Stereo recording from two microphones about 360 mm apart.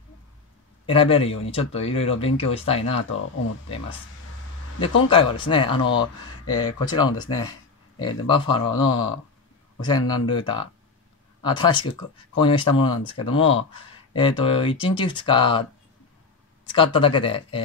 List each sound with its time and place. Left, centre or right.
0.8 s speech: centre
3.0 s speech: left
5.1 s speech: centre
8.3 s speech: centre
16.7 s speech: centre